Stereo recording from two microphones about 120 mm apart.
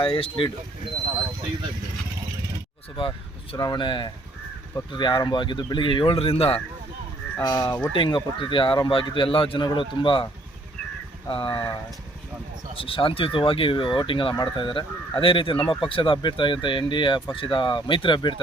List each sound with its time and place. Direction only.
0.0 s speech: 50° left (ahead or behind)
3.6 s speech: 40° left (ahead or behind)
7.4 s speech: 35° left (ahead or behind)
7.9 s speech: 45° left (ahead or behind)
11.3 s speech: 45° left (ahead or behind)
12.7 s speech: 50° left (ahead or behind)